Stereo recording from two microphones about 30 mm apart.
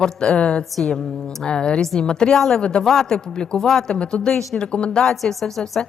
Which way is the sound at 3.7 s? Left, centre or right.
Centre.